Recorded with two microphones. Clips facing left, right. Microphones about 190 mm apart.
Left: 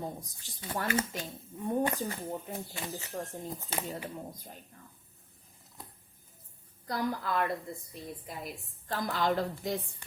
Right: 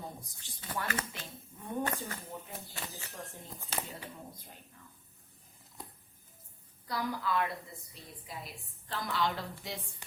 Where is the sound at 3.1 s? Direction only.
40° left (ahead or behind).